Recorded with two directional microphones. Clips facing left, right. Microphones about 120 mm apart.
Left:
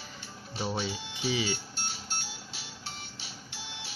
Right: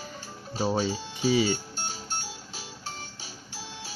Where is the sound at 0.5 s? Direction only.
40° right (ahead or behind).